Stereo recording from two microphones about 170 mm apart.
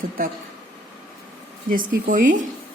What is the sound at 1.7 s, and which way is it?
Speech, 50° right (ahead or behind).